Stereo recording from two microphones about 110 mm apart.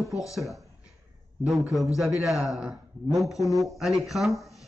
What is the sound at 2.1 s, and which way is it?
Speech, centre (ahead or behind).